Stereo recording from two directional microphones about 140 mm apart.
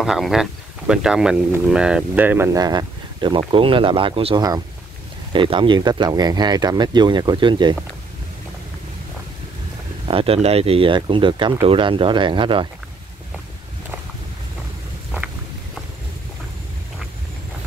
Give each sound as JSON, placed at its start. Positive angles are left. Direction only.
{"t": 0.0, "sound": "speech", "side_deg": -5}
{"t": 2.6, "sound": "speech", "side_deg": -30}
{"t": 10.0, "sound": "speech", "side_deg": -40}